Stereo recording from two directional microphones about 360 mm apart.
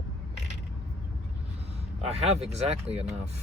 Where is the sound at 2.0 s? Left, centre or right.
Centre.